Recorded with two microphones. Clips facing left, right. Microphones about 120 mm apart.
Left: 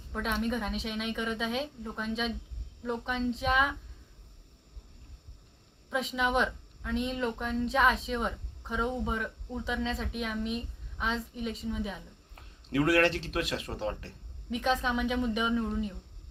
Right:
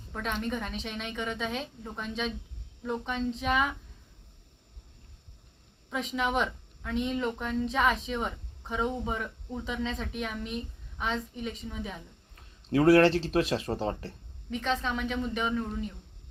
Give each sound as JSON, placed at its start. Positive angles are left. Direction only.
{"t": 0.1, "sound": "a woman's voice", "side_deg": 5}
{"t": 5.9, "sound": "a woman's voice", "side_deg": 0}
{"t": 12.7, "sound": "speech", "side_deg": -30}
{"t": 14.5, "sound": "a woman's voice", "side_deg": 10}